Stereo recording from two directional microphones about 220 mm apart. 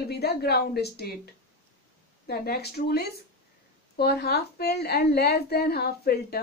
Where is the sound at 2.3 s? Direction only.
45° left (ahead or behind).